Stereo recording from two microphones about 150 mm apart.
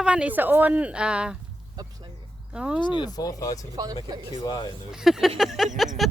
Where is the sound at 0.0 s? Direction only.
5° right (ahead or behind).